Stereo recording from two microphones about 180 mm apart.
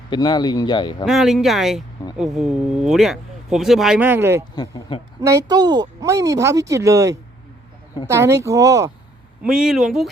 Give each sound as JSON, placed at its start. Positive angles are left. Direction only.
{"t": 0.1, "sound": "speech", "side_deg": 25}
{"t": 1.0, "sound": "speech", "side_deg": 0}
{"t": 4.5, "sound": "speech", "side_deg": 25}
{"t": 5.2, "sound": "speech", "side_deg": -15}
{"t": 9.4, "sound": "speech", "side_deg": -5}